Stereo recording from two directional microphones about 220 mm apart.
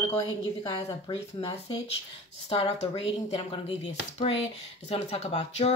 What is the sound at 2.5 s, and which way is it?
A woman's voice, 25° left (ahead or behind).